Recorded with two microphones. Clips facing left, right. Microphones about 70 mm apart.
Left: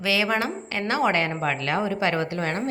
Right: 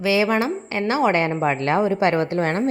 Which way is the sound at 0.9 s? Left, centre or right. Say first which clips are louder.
Right 3 dB; centre.